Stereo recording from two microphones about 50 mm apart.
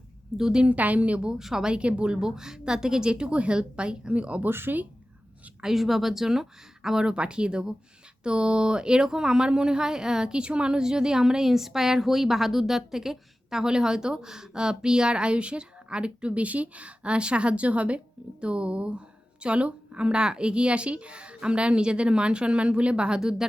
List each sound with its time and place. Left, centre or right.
0.3 s speech: centre
0.7 s speech: right
1.4 s speech: centre; by 2.1 s right
2.2 s speech: centre
4.4 s speech: right
5.6 s speech: centre
7.0 s speech: centre